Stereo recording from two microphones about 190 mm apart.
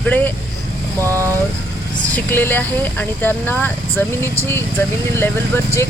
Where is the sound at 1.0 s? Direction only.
15° right (ahead or behind).